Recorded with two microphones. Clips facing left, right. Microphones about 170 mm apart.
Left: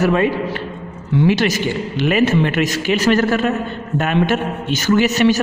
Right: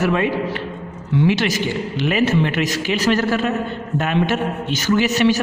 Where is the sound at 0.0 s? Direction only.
40° left (ahead or behind).